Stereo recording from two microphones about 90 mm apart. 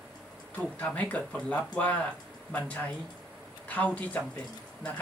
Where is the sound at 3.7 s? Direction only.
15° left (ahead or behind).